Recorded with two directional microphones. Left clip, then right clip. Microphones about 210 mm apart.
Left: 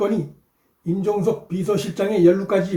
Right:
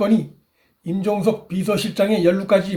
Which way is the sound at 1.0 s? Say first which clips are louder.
Right 1 dB; 35° right (ahead or behind).